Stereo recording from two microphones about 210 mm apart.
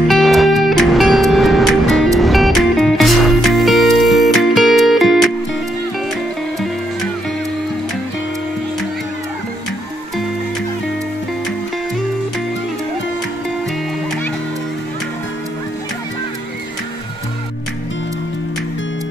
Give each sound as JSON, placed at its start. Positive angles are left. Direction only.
{"t": 0.1, "sound": "music", "side_deg": 0}